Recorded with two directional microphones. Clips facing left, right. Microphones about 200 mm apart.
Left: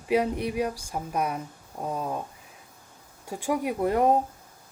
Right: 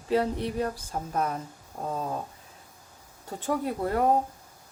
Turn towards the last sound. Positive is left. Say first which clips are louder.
# left 2 dB
turn(degrees=20)  # may be behind; listen again after turning